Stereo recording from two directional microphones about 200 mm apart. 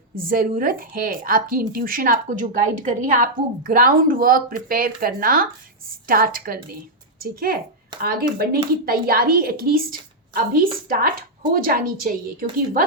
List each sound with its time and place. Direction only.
0.2 s a woman's voice: 45° right (ahead or behind)